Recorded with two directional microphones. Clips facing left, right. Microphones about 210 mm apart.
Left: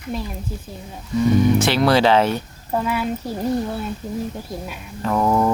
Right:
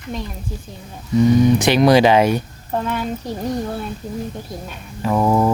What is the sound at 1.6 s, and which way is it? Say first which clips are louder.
Speech: right 4 dB; 15° right (ahead or behind).